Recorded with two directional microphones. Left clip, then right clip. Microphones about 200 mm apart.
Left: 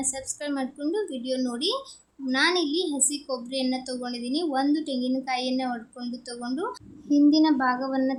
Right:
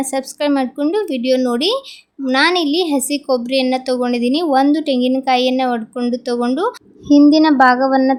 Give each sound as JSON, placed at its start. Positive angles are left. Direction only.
{"t": 0.0, "sound": "a woman's voice", "side_deg": -40}